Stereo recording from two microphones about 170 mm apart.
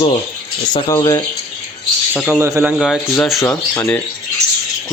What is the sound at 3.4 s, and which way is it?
Speech, 10° left (ahead or behind).